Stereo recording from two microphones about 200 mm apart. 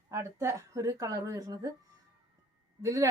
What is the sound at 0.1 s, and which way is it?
A woman's voice, 15° right (ahead or behind).